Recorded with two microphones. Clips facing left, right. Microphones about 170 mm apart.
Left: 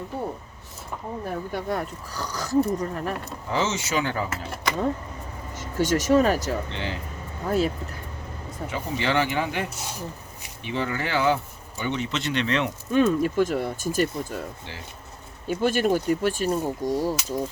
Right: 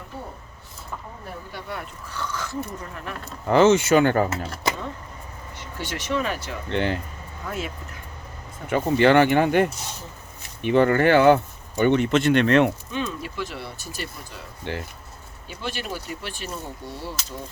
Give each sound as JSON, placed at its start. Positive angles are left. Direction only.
{"t": 1.5, "sound": "speech", "side_deg": 40}
{"t": 3.4, "sound": "speech", "side_deg": -60}
{"t": 5.5, "sound": "speech", "side_deg": 40}
{"t": 6.7, "sound": "speech", "side_deg": -55}
{"t": 7.4, "sound": "speech", "side_deg": 35}
{"t": 8.7, "sound": "speech", "side_deg": -55}
{"t": 12.9, "sound": "speech", "side_deg": 50}
{"t": 14.6, "sound": "speech", "side_deg": -60}
{"t": 15.4, "sound": "speech", "side_deg": 45}